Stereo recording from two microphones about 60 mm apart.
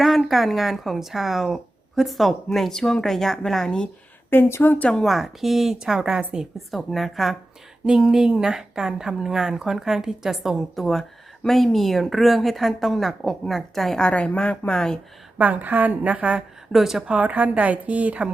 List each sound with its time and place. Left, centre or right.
0.3 s a woman's voice: centre
4.3 s speech: left
5.0 s speech: centre
6.7 s a woman's voice: centre
7.9 s a woman's voice: centre
14.0 s speech: centre
15.4 s a woman's voice: right
16.7 s speech: centre
17.1 s a woman's voice: right